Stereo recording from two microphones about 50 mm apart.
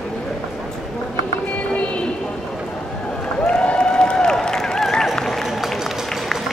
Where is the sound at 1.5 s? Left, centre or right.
Left.